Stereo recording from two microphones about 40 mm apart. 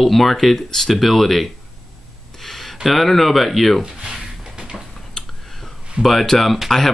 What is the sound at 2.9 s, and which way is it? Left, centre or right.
Speech, centre.